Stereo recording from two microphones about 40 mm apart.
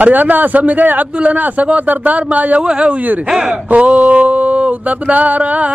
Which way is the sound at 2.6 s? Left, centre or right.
Right.